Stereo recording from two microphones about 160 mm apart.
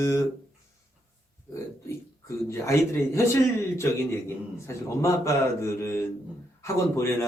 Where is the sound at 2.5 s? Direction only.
20° left (ahead or behind).